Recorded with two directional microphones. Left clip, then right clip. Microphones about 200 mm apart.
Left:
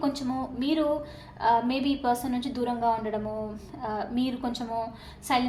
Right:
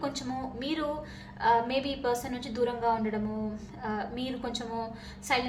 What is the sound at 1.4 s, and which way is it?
A woman's voice, 25° left (ahead or behind).